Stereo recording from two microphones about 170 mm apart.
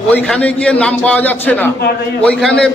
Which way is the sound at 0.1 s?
10° left (ahead or behind).